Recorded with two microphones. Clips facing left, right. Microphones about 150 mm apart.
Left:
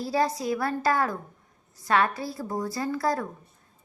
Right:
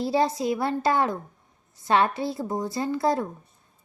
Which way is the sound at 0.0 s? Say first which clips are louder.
Right 3 dB; 25° right (ahead or behind).